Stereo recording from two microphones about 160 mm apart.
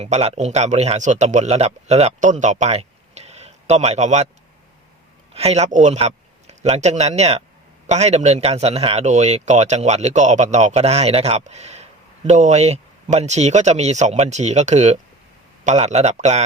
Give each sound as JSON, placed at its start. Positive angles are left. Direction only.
{"t": 0.0, "sound": "a man's voice", "side_deg": -40}
{"t": 5.3, "sound": "a man's voice", "side_deg": -40}